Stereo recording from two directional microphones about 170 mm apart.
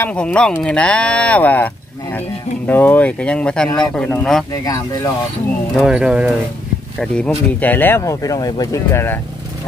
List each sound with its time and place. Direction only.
0.0 s speech: 5° left (ahead or behind)
4.6 s speech: 20° left (ahead or behind)
5.8 s speech: 5° right (ahead or behind); by 9.2 s 15° left (ahead or behind)